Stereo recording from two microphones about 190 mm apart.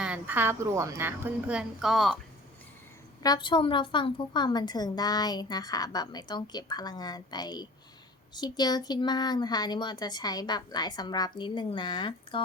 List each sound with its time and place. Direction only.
0.0 s a woman's voice: 10° right (ahead or behind)
3.2 s a woman's voice: 25° left (ahead or behind)